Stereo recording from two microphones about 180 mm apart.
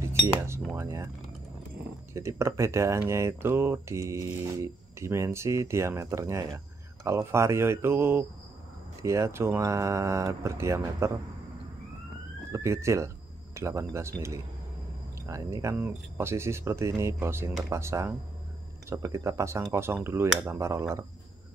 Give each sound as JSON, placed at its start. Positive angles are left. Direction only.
{"t": 0.7, "sound": "speech", "side_deg": -15}
{"t": 2.1, "sound": "speech", "side_deg": -15}
{"t": 12.5, "sound": "speech", "side_deg": -15}
{"t": 15.2, "sound": "speech", "side_deg": -15}